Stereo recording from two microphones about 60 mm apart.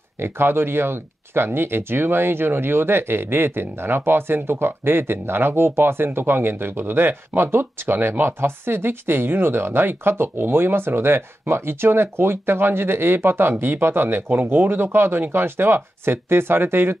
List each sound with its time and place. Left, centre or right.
0.2 s speech: right